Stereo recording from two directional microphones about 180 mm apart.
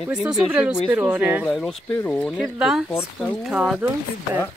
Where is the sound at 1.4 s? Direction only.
5° left (ahead or behind).